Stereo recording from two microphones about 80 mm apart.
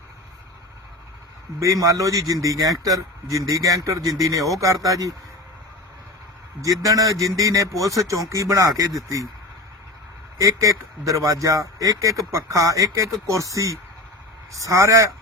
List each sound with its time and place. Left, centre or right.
1.5 s a man's voice: right
6.6 s a man's voice: right
10.4 s a man's voice: right